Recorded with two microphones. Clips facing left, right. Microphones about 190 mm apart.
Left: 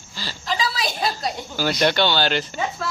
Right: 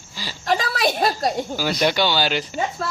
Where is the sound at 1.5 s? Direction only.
5° right (ahead or behind).